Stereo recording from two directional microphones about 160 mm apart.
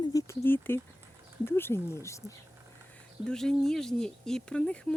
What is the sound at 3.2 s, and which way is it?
Speech, 5° left (ahead or behind).